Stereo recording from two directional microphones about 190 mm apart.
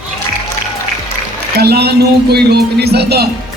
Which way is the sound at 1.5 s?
55° right (ahead or behind).